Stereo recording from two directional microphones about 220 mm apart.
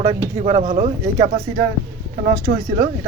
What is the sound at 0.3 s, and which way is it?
Speech, 30° right (ahead or behind).